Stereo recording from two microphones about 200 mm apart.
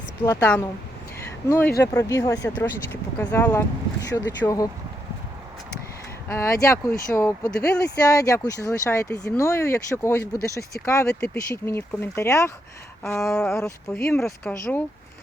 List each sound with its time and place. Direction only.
0.3 s speech: 5° left (ahead or behind)
6.2 s speech: 10° left (ahead or behind)
10.3 s speech: 50° left (ahead or behind)
10.8 s speech: 15° left (ahead or behind)
13.2 s speech: 5° left (ahead or behind)